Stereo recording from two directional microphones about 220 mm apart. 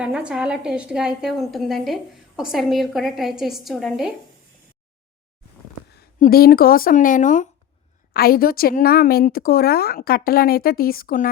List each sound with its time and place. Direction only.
0.0 s a woman's voice: 5° right (ahead or behind)
6.0 s a woman's voice: 40° left (ahead or behind)